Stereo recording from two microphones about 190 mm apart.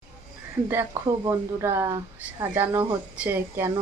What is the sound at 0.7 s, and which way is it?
Speech, 10° right (ahead or behind).